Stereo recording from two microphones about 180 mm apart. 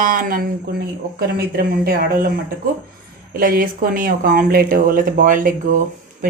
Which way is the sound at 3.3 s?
50° right (ahead or behind).